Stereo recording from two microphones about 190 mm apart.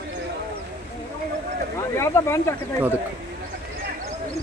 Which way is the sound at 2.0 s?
15° left (ahead or behind).